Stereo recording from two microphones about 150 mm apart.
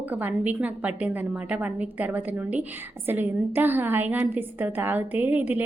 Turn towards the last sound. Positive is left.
turn(degrees=-10)  # may be behind; listen again after turning